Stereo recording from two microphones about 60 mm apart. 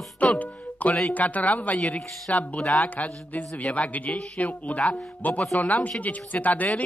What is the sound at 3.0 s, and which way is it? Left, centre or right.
Speech, centre.